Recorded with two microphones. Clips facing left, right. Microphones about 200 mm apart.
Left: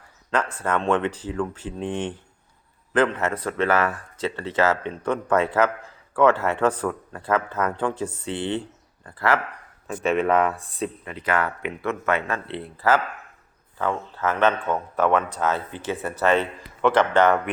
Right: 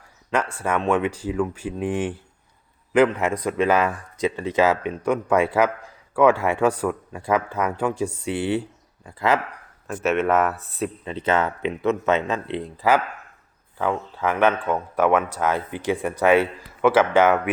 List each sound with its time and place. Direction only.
0.3 s speech: 10° right (ahead or behind)
9.8 s speech: centre (ahead or behind)
11.0 s speech: 25° right (ahead or behind); by 17.5 s 5° right (ahead or behind)